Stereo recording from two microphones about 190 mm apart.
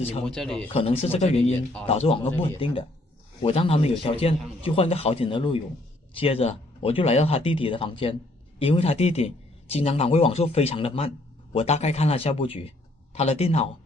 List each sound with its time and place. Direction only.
0.3 s speech: centre (ahead or behind)
0.7 s a man's voice: 30° left (ahead or behind)